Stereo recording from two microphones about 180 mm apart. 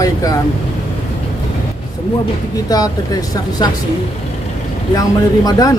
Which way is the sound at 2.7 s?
20° left (ahead or behind).